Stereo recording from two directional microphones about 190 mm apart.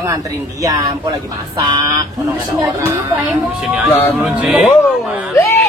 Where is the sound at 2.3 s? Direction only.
10° right (ahead or behind).